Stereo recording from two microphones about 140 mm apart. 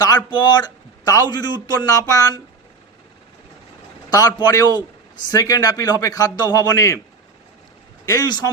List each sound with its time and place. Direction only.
0.3 s a man's voice: 30° left (ahead or behind)
4.1 s a man's voice: 30° left (ahead or behind)
8.0 s a man's voice: 25° left (ahead or behind)